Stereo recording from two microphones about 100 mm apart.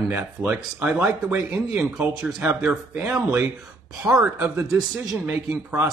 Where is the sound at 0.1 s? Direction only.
20° right (ahead or behind).